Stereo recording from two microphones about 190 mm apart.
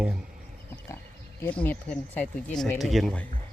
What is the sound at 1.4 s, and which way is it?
Speech, 10° left (ahead or behind).